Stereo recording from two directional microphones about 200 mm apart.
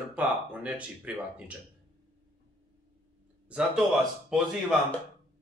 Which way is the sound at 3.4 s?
5° right (ahead or behind).